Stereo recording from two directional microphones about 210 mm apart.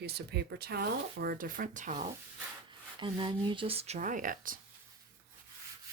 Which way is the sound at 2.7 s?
20° right (ahead or behind).